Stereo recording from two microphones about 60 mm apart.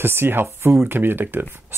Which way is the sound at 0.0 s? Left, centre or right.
Right.